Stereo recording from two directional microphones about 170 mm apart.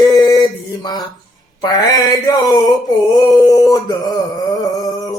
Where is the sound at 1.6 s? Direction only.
25° left (ahead or behind).